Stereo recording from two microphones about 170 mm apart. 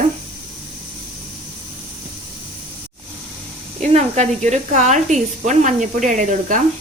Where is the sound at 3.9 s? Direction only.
40° right (ahead or behind).